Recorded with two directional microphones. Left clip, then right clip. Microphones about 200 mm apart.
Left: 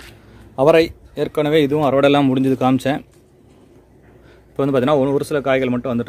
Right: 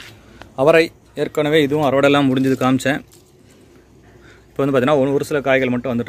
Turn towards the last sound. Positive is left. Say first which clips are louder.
# right 1 dB
turn(degrees=0)  # may be behind; listen again after turning